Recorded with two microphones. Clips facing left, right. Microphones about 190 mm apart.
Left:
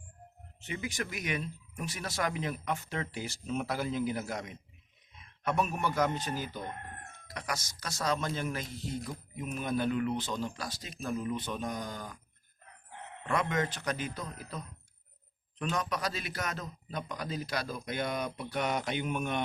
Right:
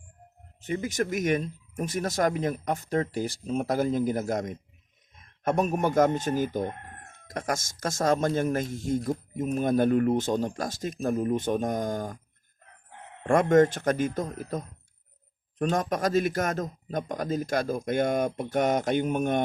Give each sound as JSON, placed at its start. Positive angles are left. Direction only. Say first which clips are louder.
{"t": 0.6, "sound": "speech", "louder": "right 9 dB", "side_deg": -45}
{"t": 13.2, "sound": "speech", "louder": "right 12 dB", "side_deg": -50}